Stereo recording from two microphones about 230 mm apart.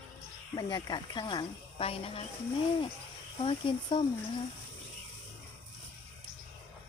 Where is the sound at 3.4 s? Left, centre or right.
Left.